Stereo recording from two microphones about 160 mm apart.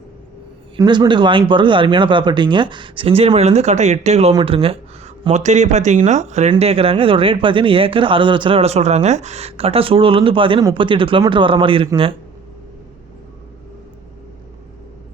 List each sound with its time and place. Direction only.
0.8 s speech: 30° right (ahead or behind)